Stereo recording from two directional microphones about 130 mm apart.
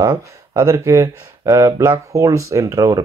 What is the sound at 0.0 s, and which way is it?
Speech, 20° right (ahead or behind).